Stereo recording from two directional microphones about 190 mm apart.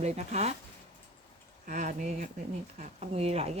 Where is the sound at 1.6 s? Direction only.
45° right (ahead or behind).